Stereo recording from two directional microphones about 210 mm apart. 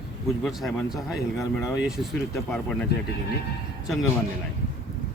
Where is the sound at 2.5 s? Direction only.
5° left (ahead or behind).